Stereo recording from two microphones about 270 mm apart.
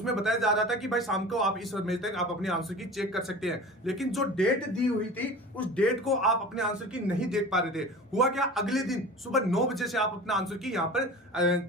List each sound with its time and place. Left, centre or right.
0.0 s speech: centre